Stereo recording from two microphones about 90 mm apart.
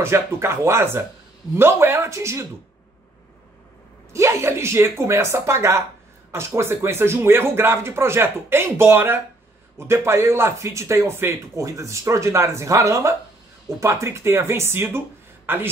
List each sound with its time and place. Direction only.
0.0 s speech: 30° right (ahead or behind)
4.1 s speech: 35° right (ahead or behind)